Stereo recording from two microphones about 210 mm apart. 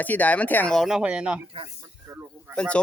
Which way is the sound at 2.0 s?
10° right (ahead or behind).